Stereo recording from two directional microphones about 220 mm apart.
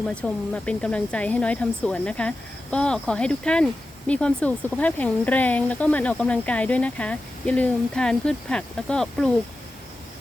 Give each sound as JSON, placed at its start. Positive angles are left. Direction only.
{"t": 0.1, "sound": "speech", "side_deg": 5}